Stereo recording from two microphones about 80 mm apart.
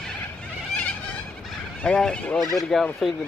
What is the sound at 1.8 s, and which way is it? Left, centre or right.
Speech, centre.